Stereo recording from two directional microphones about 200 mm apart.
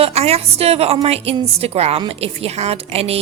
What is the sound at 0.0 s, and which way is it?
Speech, 30° right (ahead or behind).